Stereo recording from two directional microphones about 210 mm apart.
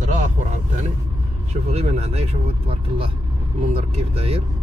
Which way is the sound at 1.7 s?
30° right (ahead or behind).